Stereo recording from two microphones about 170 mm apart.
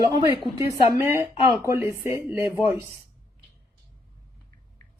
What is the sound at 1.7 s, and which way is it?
Speech, 15° right (ahead or behind).